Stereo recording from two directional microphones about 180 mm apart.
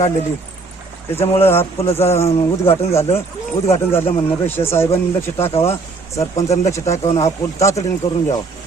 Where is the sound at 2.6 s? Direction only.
35° left (ahead or behind).